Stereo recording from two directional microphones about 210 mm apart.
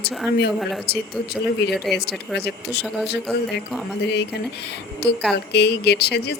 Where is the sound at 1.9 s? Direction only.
50° left (ahead or behind).